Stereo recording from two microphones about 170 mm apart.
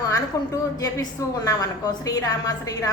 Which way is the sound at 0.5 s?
20° left (ahead or behind).